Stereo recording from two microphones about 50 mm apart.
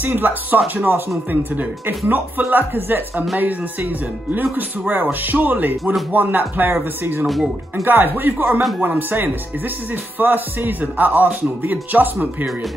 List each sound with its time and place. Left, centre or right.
0.0 s speech: right
4.3 s speech: right